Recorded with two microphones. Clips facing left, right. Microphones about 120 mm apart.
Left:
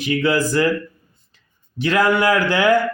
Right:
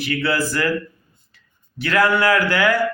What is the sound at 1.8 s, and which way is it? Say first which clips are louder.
Speech: left 1 dB; 20° left (ahead or behind).